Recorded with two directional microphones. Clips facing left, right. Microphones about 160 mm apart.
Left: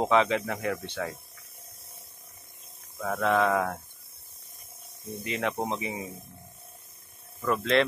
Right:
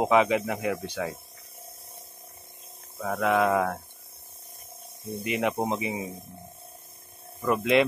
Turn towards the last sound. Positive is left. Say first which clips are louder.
# right 2 dB
turn(degrees=-10)  # may be behind; listen again after turning